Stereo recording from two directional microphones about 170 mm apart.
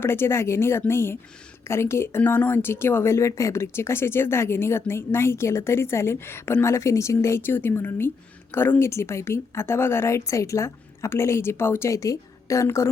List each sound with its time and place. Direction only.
0.0 s a woman's voice: 15° left (ahead or behind)